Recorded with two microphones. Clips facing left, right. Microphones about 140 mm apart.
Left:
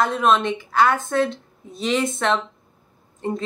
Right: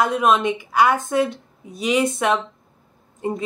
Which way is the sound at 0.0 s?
10° right (ahead or behind).